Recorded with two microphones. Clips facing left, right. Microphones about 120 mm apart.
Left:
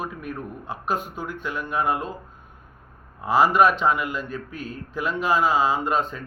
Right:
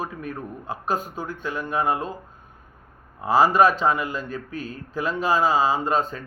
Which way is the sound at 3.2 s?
35° right (ahead or behind).